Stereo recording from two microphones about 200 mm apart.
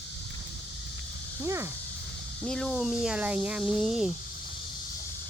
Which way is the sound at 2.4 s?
5° left (ahead or behind).